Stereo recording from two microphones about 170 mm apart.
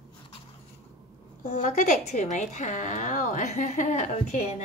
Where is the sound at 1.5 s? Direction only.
45° left (ahead or behind).